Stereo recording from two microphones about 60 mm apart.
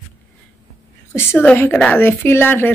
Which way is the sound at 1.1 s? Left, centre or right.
Left.